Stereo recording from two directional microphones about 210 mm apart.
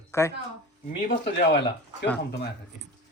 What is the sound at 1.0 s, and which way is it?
Speech, 55° left (ahead or behind).